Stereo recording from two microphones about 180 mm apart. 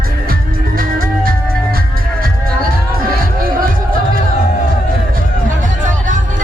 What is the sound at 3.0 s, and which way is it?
Music, 55° right (ahead or behind).